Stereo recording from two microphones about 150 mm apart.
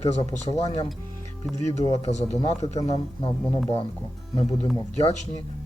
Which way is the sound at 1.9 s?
45° left (ahead or behind).